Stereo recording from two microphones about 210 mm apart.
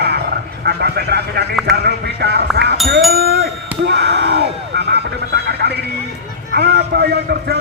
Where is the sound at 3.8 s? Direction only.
50° right (ahead or behind).